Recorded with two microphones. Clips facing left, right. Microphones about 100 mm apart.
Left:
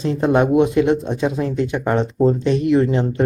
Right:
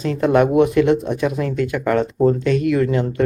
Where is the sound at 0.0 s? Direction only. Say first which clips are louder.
Right 1 dB; 30° left (ahead or behind).